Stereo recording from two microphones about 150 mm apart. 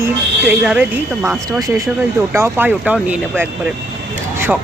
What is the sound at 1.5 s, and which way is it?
Speech, 20° right (ahead or behind).